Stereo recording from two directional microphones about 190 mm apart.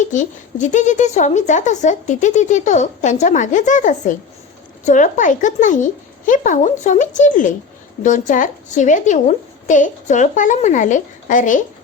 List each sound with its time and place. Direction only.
0.0 s speech: 40° left (ahead or behind)